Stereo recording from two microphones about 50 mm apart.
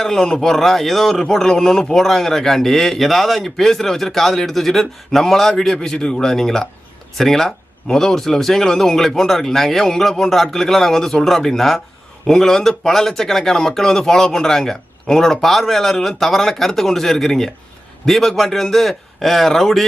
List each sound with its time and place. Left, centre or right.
0.0 s a man's voice: centre